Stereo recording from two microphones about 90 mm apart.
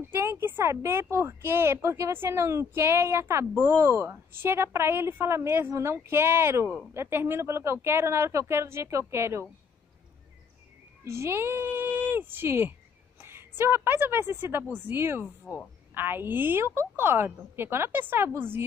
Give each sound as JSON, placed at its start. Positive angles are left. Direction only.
{"t": 0.0, "sound": "speech", "side_deg": -30}
{"t": 11.1, "sound": "speech", "side_deg": -30}